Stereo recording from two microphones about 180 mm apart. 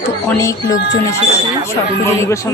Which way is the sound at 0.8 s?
70° left (ahead or behind).